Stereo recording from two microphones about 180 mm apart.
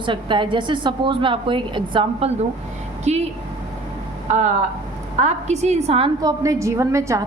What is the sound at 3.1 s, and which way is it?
Speech, 40° right (ahead or behind).